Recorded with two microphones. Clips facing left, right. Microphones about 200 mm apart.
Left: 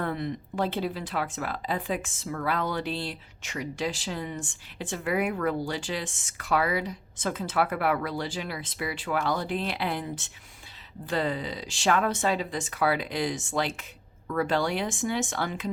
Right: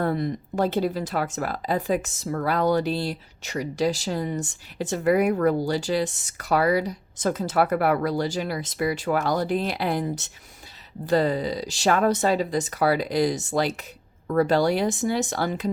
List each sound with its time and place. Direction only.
0.0 s speech: 40° right (ahead or behind)